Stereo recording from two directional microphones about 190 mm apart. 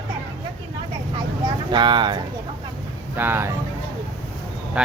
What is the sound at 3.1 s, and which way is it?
Speech, 10° right (ahead or behind).